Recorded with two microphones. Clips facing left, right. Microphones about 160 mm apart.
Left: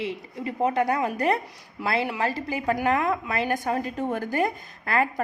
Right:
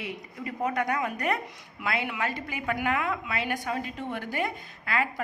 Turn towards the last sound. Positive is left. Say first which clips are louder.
# left 5 dB
turn(degrees=45)  # may be behind; listen again after turning